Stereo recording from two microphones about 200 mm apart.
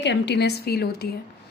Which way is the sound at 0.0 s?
60° left (ahead or behind).